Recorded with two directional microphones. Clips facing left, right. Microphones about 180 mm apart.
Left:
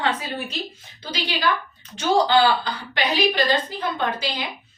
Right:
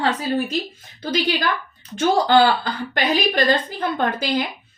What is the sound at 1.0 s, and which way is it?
A woman's voice, 50° right (ahead or behind).